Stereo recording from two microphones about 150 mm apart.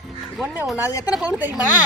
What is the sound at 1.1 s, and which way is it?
Speech, 10° right (ahead or behind).